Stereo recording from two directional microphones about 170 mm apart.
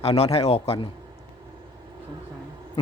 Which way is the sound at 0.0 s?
35° left (ahead or behind).